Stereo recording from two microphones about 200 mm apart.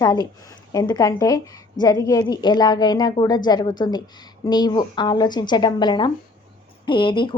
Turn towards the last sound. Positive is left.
turn(degrees=25)  # may be behind; listen again after turning